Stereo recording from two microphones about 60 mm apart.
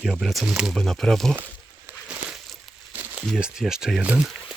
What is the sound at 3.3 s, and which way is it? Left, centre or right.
Speech, centre.